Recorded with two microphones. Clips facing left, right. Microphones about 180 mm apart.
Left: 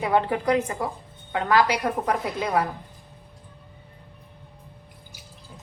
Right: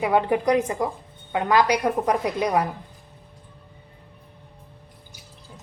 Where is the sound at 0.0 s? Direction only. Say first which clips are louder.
Right 2 dB; 15° right (ahead or behind).